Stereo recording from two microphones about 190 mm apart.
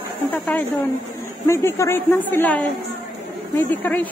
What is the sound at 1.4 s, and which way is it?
A woman's voice, 15° left (ahead or behind).